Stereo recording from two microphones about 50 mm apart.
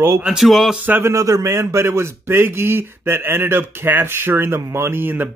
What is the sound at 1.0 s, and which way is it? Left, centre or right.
Speech, right.